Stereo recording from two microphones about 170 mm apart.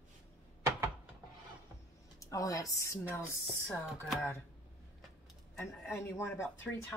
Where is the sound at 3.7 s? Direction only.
Centre (ahead or behind).